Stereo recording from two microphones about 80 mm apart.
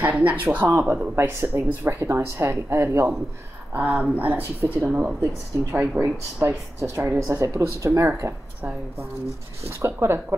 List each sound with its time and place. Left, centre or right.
0.0 s speech: centre
3.7 s speech: centre
6.4 s a woman's voice: right
9.8 s a woman's voice: right